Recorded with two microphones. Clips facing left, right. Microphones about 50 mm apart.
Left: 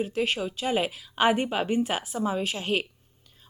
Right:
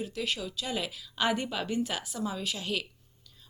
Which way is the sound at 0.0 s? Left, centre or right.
Left.